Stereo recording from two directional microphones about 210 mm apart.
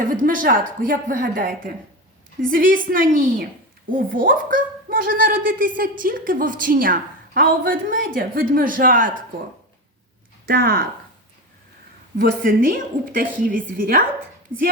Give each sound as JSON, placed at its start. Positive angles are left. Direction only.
{"t": 0.0, "sound": "a woman's voice", "side_deg": -40}
{"t": 10.4, "sound": "speech", "side_deg": -45}
{"t": 12.1, "sound": "a woman's voice", "side_deg": -45}